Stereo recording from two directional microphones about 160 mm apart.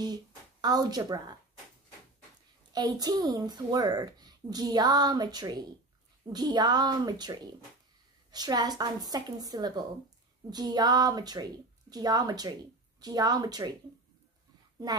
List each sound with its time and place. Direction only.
0.0 s speech: 25° right (ahead or behind)
2.7 s a woman's voice: 25° right (ahead or behind)